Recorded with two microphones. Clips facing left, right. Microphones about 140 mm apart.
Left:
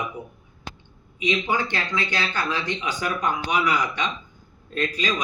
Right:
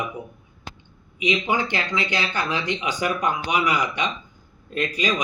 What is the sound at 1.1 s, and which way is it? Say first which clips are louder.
Speech: right 1 dB; 15° right (ahead or behind).